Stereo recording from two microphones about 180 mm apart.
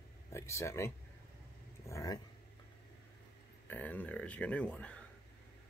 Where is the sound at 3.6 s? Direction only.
10° left (ahead or behind).